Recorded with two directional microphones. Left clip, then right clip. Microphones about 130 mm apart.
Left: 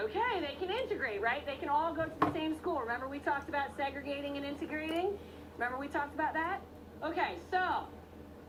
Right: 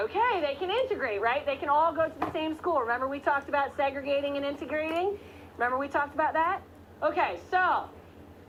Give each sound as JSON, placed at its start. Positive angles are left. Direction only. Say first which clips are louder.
{"t": 0.1, "sound": "a woman's voice", "louder": "right 7 dB", "side_deg": 20}